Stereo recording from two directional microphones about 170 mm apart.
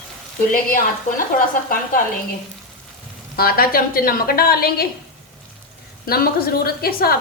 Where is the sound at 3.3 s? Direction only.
60° left (ahead or behind).